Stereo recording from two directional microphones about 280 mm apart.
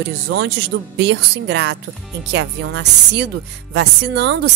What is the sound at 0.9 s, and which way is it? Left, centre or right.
Speech, right.